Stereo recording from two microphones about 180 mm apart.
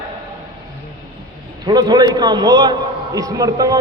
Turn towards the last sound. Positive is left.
turn(degrees=-20)  # may be behind; listen again after turning